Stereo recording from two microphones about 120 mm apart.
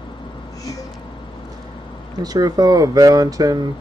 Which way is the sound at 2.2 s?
35° right (ahead or behind).